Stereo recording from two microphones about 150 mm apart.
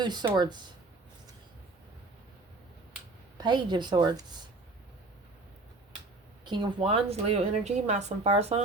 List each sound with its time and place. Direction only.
0.0 s a woman's voice: 30° right (ahead or behind)
3.3 s a woman's voice: 30° right (ahead or behind)
6.4 s a woman's voice: 30° right (ahead or behind)